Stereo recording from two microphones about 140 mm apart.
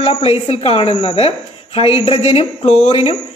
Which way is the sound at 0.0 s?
45° left (ahead or behind).